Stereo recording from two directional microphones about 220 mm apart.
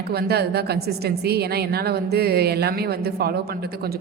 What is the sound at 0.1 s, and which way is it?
A woman's voice, 45° right (ahead or behind).